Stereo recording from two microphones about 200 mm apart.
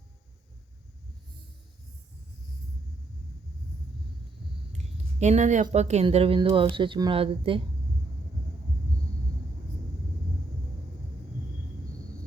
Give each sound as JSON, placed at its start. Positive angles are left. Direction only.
{"t": 5.2, "sound": "speech", "side_deg": -35}